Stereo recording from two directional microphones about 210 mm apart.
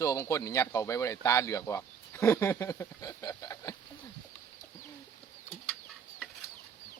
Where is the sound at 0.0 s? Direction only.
15° left (ahead or behind).